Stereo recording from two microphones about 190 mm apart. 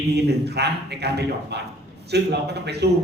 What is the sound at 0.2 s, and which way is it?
A man's voice, 60° right (ahead or behind).